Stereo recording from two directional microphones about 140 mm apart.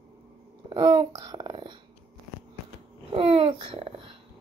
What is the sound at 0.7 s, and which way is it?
Speech, 30° right (ahead or behind).